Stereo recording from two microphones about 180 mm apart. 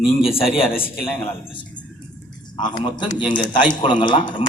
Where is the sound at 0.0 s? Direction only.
30° left (ahead or behind).